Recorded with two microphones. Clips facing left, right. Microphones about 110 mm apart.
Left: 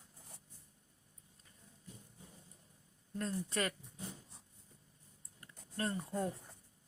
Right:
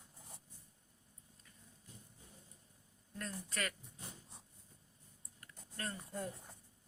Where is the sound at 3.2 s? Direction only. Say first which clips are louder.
Left 5 dB; 25° left (ahead or behind).